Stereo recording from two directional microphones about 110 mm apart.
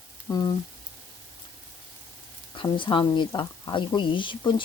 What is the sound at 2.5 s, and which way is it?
Speech, 45° left (ahead or behind).